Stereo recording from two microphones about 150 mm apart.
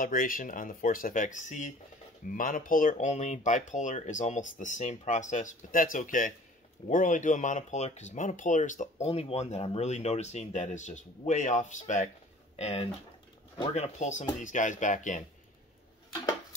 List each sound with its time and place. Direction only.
0.0 s speech: 70° left (ahead or behind)